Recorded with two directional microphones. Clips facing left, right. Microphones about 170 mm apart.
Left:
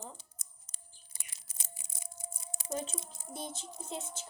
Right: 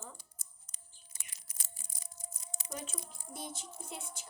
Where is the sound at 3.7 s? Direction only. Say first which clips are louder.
Left 5 dB; 25° left (ahead or behind).